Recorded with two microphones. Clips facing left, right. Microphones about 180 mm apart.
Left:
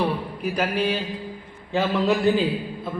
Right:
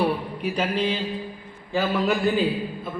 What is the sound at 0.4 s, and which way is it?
Speech, 10° left (ahead or behind).